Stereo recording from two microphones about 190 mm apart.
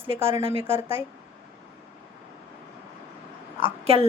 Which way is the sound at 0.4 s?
30° right (ahead or behind).